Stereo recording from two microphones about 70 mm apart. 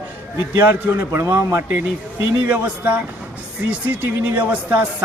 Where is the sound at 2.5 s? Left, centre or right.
Right.